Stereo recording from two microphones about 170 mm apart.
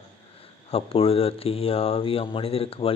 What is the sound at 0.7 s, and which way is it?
Speech, 35° left (ahead or behind).